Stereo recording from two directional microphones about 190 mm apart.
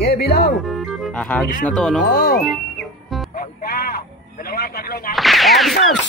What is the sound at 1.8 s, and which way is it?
Speech, 5° left (ahead or behind).